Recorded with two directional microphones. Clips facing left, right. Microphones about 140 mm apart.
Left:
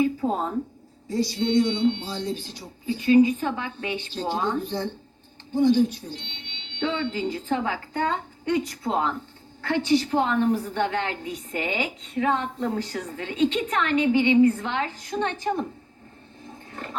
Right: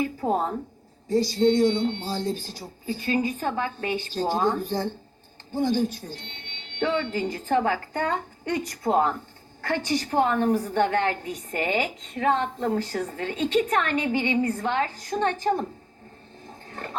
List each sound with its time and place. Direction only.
1.1 s speech: 40° right (ahead or behind)
5.5 s a woman's voice: 45° right (ahead or behind)
6.2 s a sound: 45° right (ahead or behind)
7.1 s a woman's voice: 45° right (ahead or behind)